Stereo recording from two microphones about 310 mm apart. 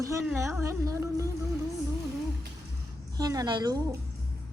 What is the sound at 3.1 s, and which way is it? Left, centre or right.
Speech, centre.